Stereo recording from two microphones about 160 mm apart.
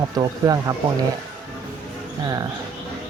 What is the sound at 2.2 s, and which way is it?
Speech, 25° right (ahead or behind).